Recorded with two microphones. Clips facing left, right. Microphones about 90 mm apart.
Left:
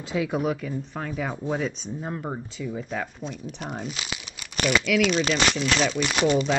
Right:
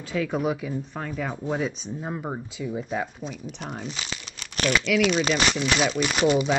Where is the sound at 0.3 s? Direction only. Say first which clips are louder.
Even; centre (ahead or behind).